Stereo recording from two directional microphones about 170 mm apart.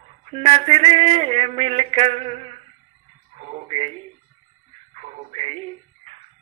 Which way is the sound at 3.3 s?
40° right (ahead or behind).